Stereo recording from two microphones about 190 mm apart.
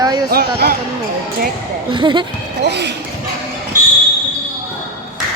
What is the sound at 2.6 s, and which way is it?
Basketball bounce, 65° right (ahead or behind).